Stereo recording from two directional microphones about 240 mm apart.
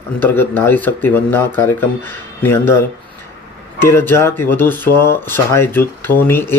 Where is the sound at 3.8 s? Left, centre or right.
Centre.